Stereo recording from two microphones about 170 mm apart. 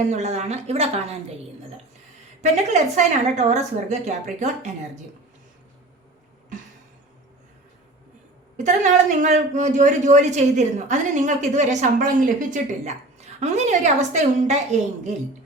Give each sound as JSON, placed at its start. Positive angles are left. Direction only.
{"t": 0.1, "sound": "speech", "side_deg": -40}
{"t": 2.4, "sound": "speech", "side_deg": -45}
{"t": 8.5, "sound": "speech", "side_deg": -45}